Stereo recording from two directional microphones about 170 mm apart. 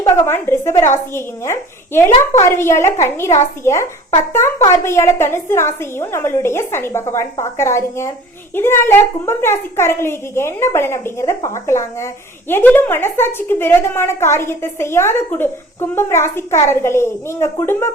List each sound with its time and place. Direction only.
0.0 s a woman's voice: 15° left (ahead or behind)